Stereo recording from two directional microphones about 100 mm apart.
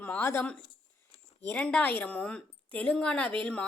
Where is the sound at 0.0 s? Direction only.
20° left (ahead or behind).